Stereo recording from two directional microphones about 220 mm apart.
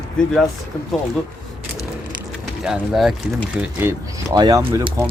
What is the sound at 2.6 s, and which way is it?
Speech, centre (ahead or behind).